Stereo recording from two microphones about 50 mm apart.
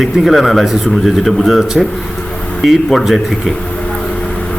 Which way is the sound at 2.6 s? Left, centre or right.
Centre.